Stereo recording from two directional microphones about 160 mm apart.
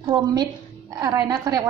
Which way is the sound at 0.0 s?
25° right (ahead or behind).